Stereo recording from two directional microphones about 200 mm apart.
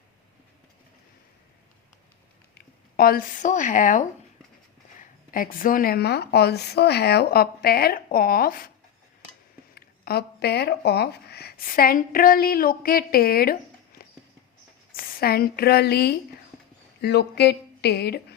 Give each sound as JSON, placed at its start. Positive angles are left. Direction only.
{"t": 2.6, "sound": "speech", "side_deg": 45}
{"t": 9.7, "sound": "speech", "side_deg": 50}
{"t": 14.9, "sound": "speech", "side_deg": 45}